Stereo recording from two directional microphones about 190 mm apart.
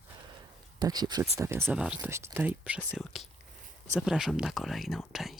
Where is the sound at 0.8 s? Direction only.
20° right (ahead or behind).